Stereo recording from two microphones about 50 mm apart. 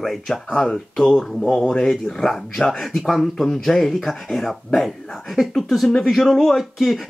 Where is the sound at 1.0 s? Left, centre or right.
Centre.